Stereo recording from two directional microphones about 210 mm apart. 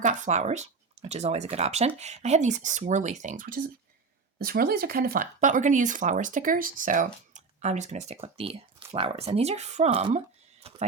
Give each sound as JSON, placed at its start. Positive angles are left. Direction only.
{"t": 0.0, "sound": "speech", "side_deg": -35}